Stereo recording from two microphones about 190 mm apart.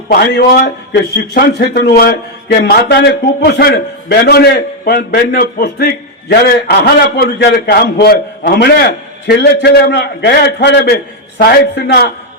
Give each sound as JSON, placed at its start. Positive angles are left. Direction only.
{"t": 0.1, "sound": "a man's voice", "side_deg": 55}